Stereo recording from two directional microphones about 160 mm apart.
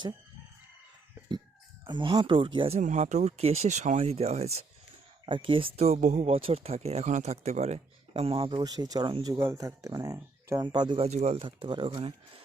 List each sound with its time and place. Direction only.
1.8 s speech: 30° right (ahead or behind)
2.7 s speech: 45° right (ahead or behind)
11.4 s speech: 30° right (ahead or behind)